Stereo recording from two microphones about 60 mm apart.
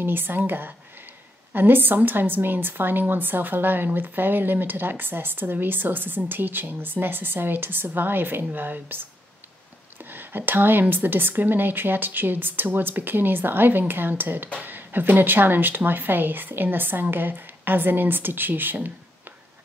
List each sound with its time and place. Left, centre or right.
0.0 s a woman's voice: right